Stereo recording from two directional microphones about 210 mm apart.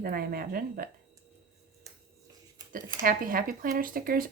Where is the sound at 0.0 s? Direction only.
45° right (ahead or behind).